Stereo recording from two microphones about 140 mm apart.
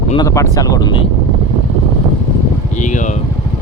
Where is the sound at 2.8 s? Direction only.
65° left (ahead or behind).